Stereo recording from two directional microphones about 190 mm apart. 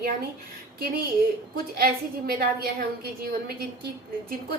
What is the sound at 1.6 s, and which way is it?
A woman's voice, 50° right (ahead or behind).